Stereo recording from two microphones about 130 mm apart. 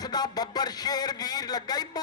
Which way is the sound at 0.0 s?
30° left (ahead or behind).